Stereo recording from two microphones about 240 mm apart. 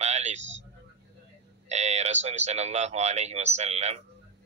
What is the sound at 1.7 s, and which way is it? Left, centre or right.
Speech, right.